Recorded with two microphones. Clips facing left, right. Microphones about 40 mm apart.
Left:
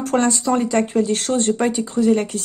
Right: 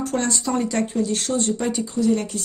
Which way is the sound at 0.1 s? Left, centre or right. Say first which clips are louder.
Left 7 dB; left.